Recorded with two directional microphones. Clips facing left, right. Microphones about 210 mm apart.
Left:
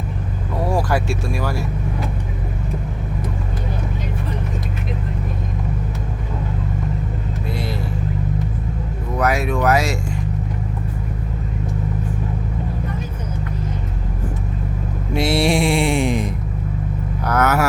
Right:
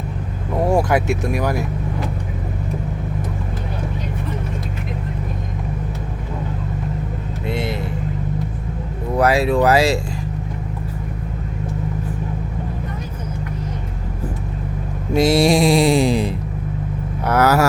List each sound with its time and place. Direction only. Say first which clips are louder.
0.7 s speech: right 3 dB; 20° right (ahead or behind)
7.4 s vehicle: right 4 dB; 25° right (ahead or behind)
9.1 s speech: right 4 dB; 30° right (ahead or behind)
15.1 s mantra: right 4 dB; 40° right (ahead or behind)
17.2 s speech: right 3 dB; 30° right (ahead or behind)